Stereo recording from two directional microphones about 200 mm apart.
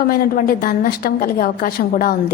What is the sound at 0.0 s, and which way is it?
A woman's voice, 45° left (ahead or behind).